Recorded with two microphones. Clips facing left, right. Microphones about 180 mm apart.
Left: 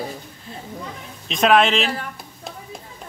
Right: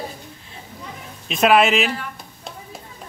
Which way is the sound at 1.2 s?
5° right (ahead or behind).